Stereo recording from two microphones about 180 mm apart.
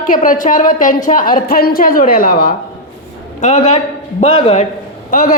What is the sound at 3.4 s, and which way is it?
A woman's voice, 40° left (ahead or behind).